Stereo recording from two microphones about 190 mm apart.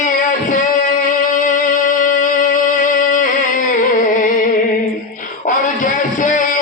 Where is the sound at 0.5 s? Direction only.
45° left (ahead or behind).